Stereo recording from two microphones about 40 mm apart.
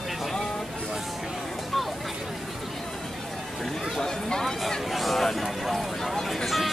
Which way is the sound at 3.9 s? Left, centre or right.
Centre.